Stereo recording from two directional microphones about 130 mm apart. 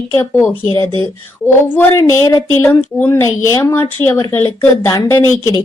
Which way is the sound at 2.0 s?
25° left (ahead or behind).